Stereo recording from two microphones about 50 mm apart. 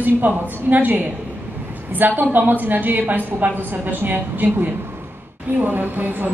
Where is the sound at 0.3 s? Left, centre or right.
Right.